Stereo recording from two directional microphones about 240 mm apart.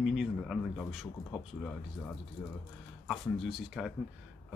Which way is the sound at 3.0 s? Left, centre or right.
Centre.